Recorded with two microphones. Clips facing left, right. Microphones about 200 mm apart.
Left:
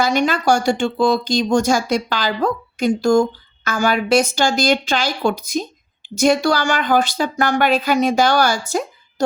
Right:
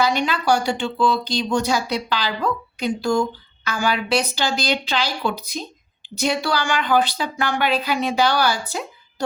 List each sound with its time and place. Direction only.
0.0 s speech: 45° left (ahead or behind)